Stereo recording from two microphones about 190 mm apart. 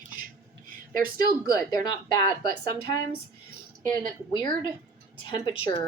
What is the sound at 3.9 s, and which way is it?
Speech, 25° left (ahead or behind).